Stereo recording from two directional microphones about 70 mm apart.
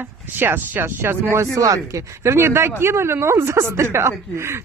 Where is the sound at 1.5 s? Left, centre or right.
Right.